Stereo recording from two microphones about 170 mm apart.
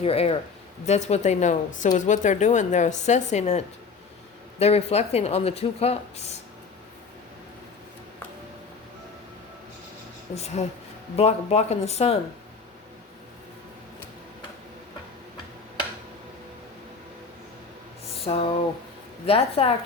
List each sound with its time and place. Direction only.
0.0 s speech: 35° left (ahead or behind)
4.6 s speech: 40° left (ahead or behind)
10.3 s speech: 40° left (ahead or behind)
18.3 s speech: 35° left (ahead or behind)